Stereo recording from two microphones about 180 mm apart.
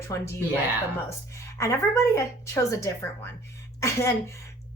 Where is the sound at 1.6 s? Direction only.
15° left (ahead or behind).